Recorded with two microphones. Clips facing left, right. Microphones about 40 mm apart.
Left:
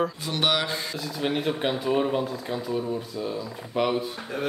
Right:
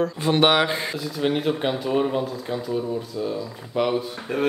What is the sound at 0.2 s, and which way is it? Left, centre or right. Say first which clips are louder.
Speech: right 7 dB; right.